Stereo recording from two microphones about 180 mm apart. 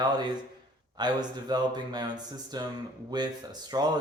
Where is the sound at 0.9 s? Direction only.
25° right (ahead or behind).